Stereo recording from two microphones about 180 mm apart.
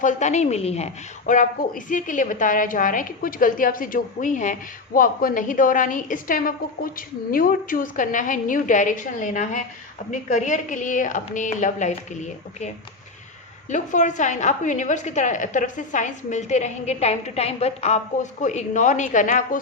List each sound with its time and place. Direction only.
0.0 s a woman's voice: 40° left (ahead or behind)
1.3 s a woman's voice: 45° left (ahead or behind)